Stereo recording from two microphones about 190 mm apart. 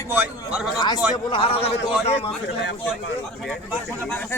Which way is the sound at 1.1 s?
25° left (ahead or behind).